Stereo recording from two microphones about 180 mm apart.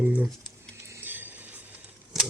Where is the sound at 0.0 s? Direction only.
10° right (ahead or behind).